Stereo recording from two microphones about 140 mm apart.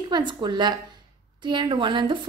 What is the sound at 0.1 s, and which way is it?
A woman's voice, 30° right (ahead or behind).